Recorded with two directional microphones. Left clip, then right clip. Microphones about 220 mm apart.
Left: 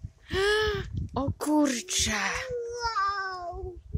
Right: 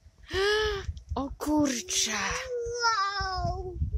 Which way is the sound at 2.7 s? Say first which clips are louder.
Right 2 dB; 15° right (ahead or behind).